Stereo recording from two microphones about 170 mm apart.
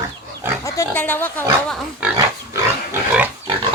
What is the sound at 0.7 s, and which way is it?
Speech, 15° left (ahead or behind).